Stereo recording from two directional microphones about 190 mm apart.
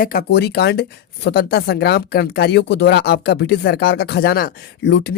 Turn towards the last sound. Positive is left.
turn(degrees=65)  # may be behind; listen again after turning